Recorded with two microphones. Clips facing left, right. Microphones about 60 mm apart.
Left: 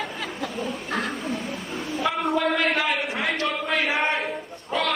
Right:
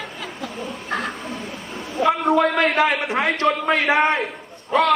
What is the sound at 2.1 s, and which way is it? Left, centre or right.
Speech, right.